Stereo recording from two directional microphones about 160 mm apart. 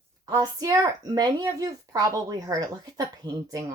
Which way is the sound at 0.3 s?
20° right (ahead or behind).